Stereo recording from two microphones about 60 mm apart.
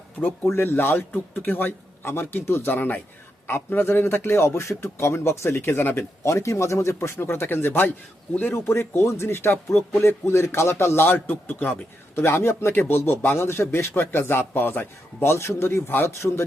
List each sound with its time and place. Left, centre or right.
0.2 s speech: left
6.2 s speech: left